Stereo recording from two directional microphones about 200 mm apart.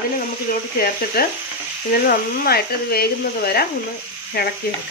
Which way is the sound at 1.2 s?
50° left (ahead or behind).